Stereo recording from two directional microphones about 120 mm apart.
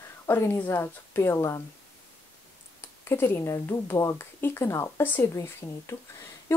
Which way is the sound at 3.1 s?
20° left (ahead or behind).